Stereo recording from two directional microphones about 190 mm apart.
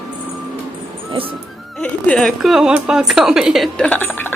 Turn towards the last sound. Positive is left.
turn(degrees=10)  # may be behind; listen again after turning